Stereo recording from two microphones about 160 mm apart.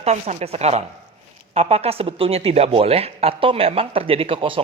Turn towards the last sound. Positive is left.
turn(degrees=-35)  # may be behind; listen again after turning